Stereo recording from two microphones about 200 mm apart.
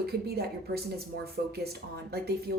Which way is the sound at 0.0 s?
50° right (ahead or behind).